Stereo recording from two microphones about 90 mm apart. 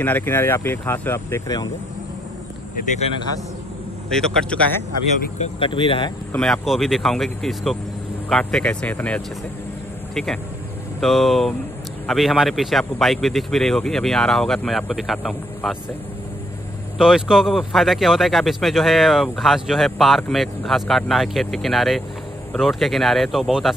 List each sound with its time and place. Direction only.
0.0 s speech: 20° left (ahead or behind)
4.1 s speech: 5° left (ahead or behind)
5.6 s speech: 80° left
6.3 s speech: 10° left (ahead or behind)
6.6 s speech: 5° right (ahead or behind)
17.0 s speech: 5° right (ahead or behind)